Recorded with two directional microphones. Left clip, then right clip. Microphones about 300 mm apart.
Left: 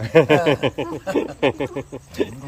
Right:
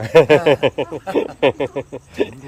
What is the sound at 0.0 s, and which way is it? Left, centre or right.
Speech, centre.